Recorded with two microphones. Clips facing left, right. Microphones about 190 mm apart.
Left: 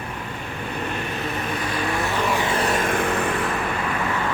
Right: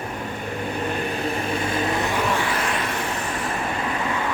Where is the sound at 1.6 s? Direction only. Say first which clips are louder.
Even; 25° right (ahead or behind).